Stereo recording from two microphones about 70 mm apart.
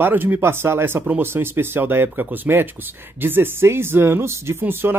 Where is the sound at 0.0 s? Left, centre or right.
Right.